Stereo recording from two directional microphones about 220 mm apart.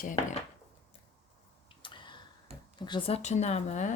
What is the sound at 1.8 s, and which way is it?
Tick-tock, 20° left (ahead or behind).